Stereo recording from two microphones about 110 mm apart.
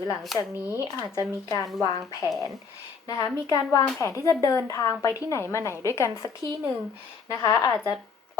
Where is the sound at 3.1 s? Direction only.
30° left (ahead or behind).